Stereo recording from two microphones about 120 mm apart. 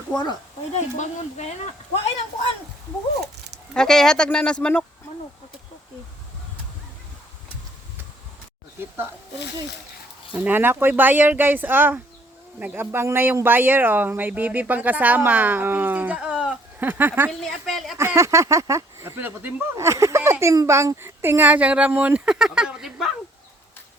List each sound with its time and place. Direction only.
0.1 s speech: 35° left (ahead or behind)
0.7 s speech: 70° left (ahead or behind)
3.8 s speech: 5° left (ahead or behind)
10.3 s speech: 15° right (ahead or behind)
17.4 s speech: centre (ahead or behind)
17.9 s speech: 20° right (ahead or behind); by 23.1 s 5° right (ahead or behind)